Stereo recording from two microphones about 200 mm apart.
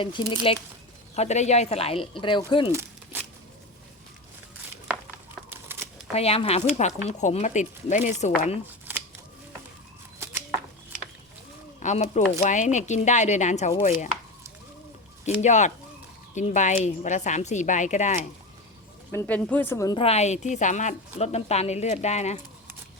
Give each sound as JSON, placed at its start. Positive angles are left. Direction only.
{"t": 0.0, "sound": "speech", "side_deg": 25}
{"t": 2.7, "sound": "a sound", "side_deg": -10}
{"t": 5.5, "sound": "a sound", "side_deg": -10}
{"t": 6.1, "sound": "speech", "side_deg": 30}
{"t": 11.8, "sound": "speech", "side_deg": 35}
{"t": 15.4, "sound": "speech", "side_deg": 35}
{"t": 19.1, "sound": "speech", "side_deg": 10}
{"t": 20.0, "sound": "speech", "side_deg": 30}